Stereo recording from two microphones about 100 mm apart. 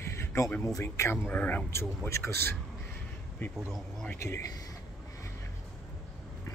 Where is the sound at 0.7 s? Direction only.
30° left (ahead or behind).